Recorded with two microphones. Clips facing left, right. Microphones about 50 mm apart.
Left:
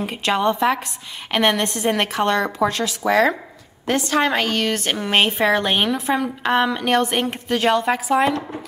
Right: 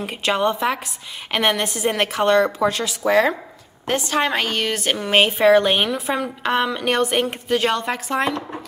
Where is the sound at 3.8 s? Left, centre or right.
Right.